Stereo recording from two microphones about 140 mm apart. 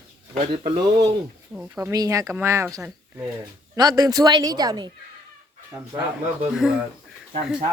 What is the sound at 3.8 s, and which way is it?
Speech, 25° right (ahead or behind).